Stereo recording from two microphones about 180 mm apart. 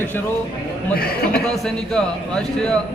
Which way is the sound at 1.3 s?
5° left (ahead or behind).